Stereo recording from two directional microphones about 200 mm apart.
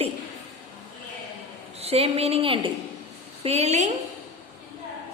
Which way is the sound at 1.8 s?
30° right (ahead or behind).